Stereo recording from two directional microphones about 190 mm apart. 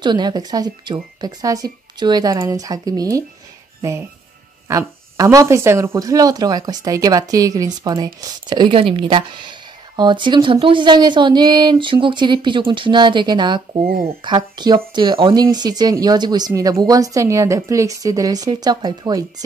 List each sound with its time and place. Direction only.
0.0 s speech: 25° right (ahead or behind)
4.6 s speech: 15° right (ahead or behind)